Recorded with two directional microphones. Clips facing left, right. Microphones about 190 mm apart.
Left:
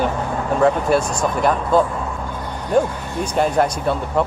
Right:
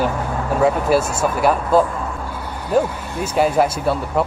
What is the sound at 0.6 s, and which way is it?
Speech, 5° right (ahead or behind).